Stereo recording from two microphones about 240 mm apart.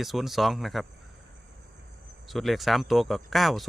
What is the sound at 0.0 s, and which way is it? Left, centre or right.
Speech, centre.